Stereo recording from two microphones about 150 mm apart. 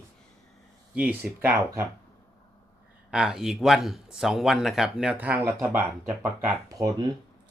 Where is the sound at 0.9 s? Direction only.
10° right (ahead or behind).